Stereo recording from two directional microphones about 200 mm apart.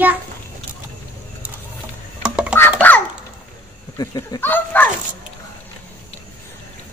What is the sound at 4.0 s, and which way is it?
Speech, 20° left (ahead or behind).